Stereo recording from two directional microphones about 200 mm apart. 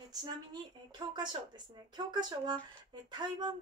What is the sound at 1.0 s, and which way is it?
Speech, 20° right (ahead or behind).